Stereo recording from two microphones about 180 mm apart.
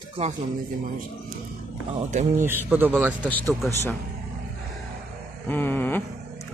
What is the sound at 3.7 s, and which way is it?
Speech, 10° left (ahead or behind).